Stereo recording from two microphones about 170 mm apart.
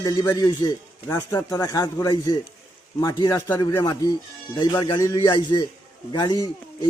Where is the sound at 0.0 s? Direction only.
25° left (ahead or behind).